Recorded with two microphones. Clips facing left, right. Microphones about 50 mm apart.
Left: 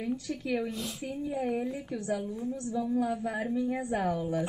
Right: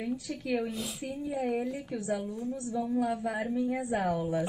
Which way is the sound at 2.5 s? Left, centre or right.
Right.